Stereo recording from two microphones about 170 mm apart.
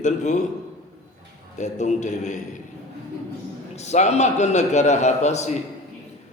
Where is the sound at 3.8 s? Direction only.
40° left (ahead or behind).